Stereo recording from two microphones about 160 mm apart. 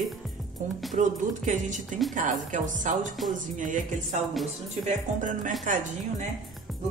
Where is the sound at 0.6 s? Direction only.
45° right (ahead or behind).